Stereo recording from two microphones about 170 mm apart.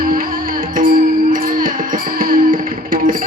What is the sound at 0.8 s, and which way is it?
Music, 55° right (ahead or behind).